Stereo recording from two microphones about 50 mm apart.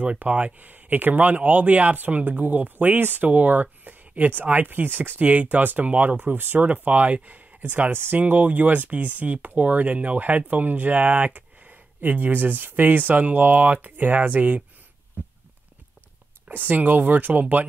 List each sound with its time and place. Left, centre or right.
0.0 s speech: right
5.2 s speech: right
6.6 s speech: right
7.6 s speech: right
8.2 s speech: right
16.4 s speech: right